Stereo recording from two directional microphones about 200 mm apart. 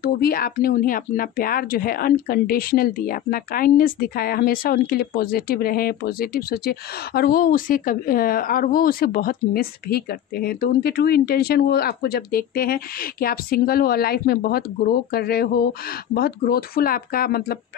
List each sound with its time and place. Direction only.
0.0 s speech: 50° left (ahead or behind)